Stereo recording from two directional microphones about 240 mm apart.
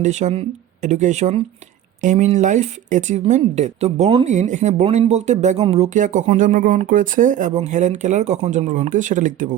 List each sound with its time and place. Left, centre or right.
0.0 s speech: right